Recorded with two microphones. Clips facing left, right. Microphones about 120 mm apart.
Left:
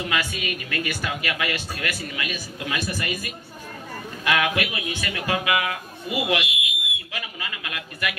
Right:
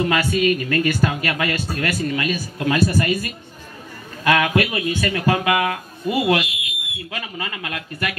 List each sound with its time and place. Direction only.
0.0 s a man's voice: 40° right (ahead or behind)